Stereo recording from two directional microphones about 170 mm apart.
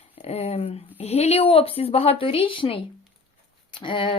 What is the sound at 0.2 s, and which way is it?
Speech, 35° left (ahead or behind).